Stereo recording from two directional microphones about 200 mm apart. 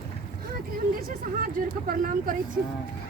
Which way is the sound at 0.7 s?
45° right (ahead or behind).